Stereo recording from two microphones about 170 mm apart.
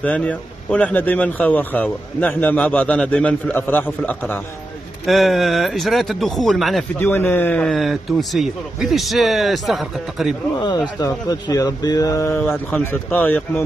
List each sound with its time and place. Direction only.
0.0 s speech: 10° left (ahead or behind)
10.6 s speech: 25° left (ahead or behind)